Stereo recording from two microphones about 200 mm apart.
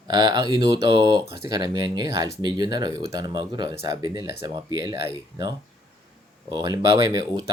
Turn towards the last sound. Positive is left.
turn(degrees=-20)  # may be behind; listen again after turning